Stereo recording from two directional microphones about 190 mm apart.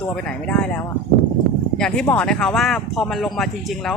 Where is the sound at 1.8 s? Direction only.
5° left (ahead or behind).